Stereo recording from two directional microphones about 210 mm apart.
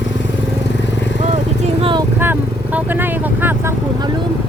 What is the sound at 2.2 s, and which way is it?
Vehicle, 10° right (ahead or behind).